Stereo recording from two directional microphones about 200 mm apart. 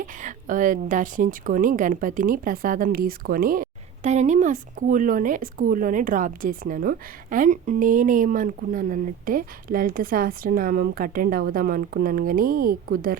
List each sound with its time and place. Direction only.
0.0 s a woman's voice: 40° right (ahead or behind)